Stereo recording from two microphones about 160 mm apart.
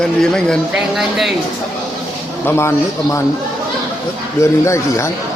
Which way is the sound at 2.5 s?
15° left (ahead or behind).